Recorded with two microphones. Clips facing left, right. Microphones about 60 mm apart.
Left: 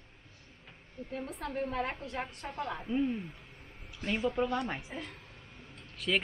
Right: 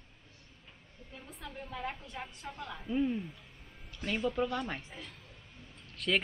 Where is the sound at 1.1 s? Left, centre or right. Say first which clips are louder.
Left 9 dB; left.